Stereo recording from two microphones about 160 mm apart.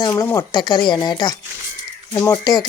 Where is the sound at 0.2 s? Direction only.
20° left (ahead or behind).